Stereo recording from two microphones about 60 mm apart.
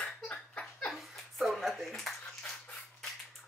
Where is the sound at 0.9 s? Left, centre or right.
Centre.